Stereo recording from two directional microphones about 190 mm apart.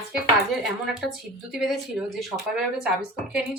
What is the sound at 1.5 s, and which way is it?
A woman's voice, centre (ahead or behind).